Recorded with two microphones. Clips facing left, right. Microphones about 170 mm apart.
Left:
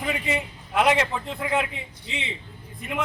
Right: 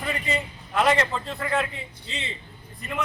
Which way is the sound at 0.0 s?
15° left (ahead or behind).